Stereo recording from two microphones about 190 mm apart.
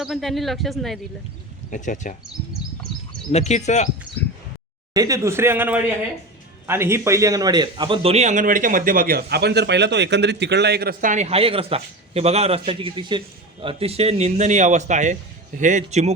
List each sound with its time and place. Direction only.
0.0 s speech: centre (ahead or behind)
1.7 s speech: 45° left (ahead or behind)
3.3 s speech: 35° left (ahead or behind)
4.1 s a sound: 25° left (ahead or behind)
4.9 s a man's voice: 15° right (ahead or behind); by 16.1 s 35° right (ahead or behind)